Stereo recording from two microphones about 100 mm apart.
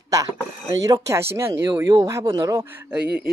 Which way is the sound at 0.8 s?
35° right (ahead or behind).